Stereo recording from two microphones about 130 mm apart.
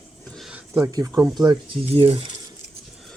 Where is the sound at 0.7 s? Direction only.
25° right (ahead or behind).